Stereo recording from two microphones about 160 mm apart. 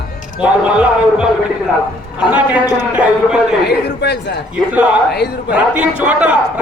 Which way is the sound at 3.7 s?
90° left.